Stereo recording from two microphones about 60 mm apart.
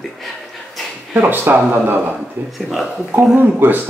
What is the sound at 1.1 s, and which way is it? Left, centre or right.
Speech, right.